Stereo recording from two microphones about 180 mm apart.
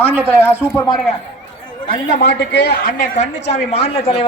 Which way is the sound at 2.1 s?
65° left (ahead or behind).